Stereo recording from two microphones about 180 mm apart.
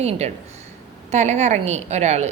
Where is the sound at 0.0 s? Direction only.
35° right (ahead or behind).